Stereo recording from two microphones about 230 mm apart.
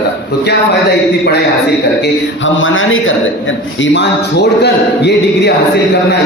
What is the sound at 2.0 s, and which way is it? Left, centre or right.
A man's voice, left.